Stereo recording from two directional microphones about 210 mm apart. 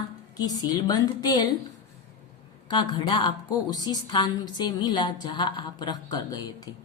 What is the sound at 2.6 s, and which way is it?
A woman's voice, 20° left (ahead or behind).